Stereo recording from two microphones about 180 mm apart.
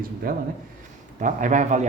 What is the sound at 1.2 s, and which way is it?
Speech, 45° right (ahead or behind).